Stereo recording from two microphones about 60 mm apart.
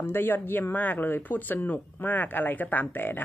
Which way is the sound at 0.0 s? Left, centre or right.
Left.